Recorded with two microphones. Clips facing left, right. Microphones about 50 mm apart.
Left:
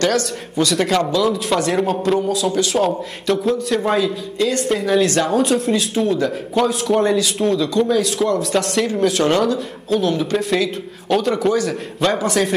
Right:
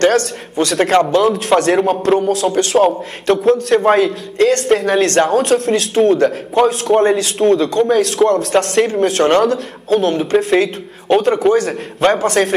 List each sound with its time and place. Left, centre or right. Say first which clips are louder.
0.0 s a man's voice: right 5 dB; right
2.8 s a man's voice: right 7 dB; right
3.3 s a man's voice: right 6 dB; right
9.4 s a man's voice: right 4 dB; right